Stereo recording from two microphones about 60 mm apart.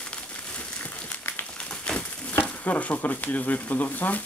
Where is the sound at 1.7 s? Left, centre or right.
Centre.